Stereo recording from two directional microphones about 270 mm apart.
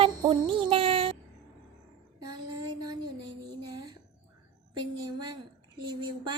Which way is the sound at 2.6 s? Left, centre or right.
Centre.